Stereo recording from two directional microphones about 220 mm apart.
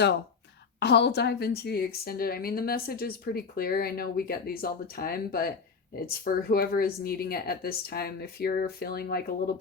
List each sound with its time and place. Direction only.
0.8 s a woman's voice: 50° left (ahead or behind)